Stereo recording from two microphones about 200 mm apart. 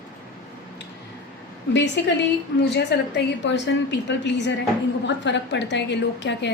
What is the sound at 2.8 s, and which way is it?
A woman's voice, 55° left (ahead or behind).